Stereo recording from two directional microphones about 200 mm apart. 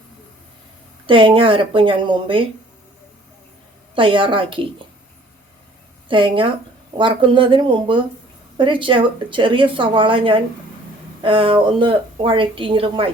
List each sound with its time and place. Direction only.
1.0 s speech: 25° right (ahead or behind)
3.9 s speech: 25° right (ahead or behind)
6.1 s speech: 25° right (ahead or behind)